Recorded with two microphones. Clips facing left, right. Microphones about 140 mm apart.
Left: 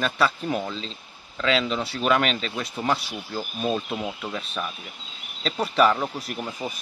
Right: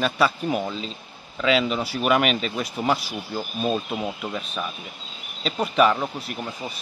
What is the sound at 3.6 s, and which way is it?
A man's voice, 10° right (ahead or behind).